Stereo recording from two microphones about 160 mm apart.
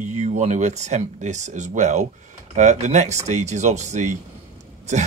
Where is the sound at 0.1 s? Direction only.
45° right (ahead or behind).